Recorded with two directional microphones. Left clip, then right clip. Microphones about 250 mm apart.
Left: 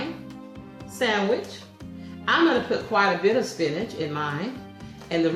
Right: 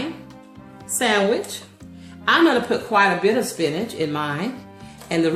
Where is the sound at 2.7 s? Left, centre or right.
Right.